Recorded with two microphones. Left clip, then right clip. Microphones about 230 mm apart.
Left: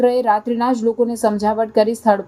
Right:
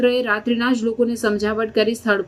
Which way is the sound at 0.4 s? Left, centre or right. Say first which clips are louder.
Left 3 dB; centre.